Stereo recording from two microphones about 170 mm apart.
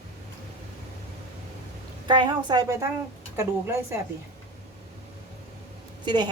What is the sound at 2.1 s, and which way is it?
A woman's voice, 25° right (ahead or behind).